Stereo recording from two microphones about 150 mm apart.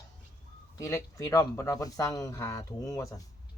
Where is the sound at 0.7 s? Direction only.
20° left (ahead or behind).